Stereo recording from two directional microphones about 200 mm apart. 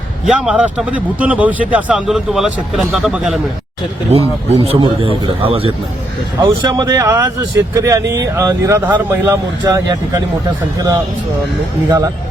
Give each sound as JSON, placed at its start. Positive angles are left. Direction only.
{"t": 0.3, "sound": "a man's voice", "side_deg": -5}
{"t": 4.4, "sound": "a man's voice", "side_deg": -30}
{"t": 6.4, "sound": "speech", "side_deg": -15}
{"t": 11.9, "sound": "speech", "side_deg": -15}